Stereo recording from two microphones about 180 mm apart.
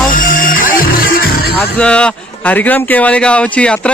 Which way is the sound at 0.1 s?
50° left (ahead or behind).